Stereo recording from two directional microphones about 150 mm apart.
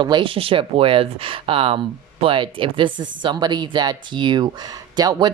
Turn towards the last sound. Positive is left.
turn(degrees=-25)  # may be behind; listen again after turning